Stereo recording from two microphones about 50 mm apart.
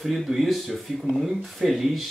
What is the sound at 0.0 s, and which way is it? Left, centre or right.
Speech, centre.